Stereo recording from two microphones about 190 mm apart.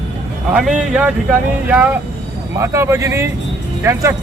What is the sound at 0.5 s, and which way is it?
A man's voice, 5° right (ahead or behind).